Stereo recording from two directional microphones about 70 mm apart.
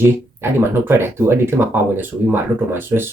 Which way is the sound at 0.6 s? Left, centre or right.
Right.